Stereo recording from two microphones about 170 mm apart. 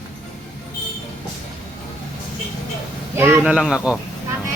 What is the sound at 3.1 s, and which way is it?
Speech, 15° right (ahead or behind).